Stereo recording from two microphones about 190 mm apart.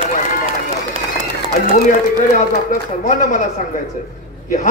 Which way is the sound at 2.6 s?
40° left (ahead or behind).